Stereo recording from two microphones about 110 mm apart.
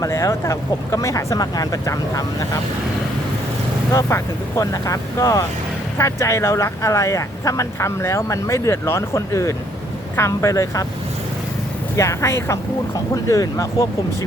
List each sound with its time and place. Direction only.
0.0 s speech: 30° left (ahead or behind)
3.9 s speech: 30° left (ahead or behind)
11.9 s speech: 25° left (ahead or behind)